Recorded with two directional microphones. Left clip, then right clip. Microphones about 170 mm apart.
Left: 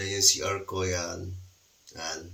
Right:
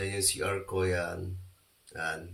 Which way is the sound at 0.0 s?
10° right (ahead or behind).